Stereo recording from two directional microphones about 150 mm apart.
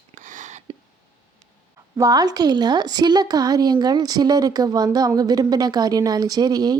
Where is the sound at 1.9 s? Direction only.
25° right (ahead or behind).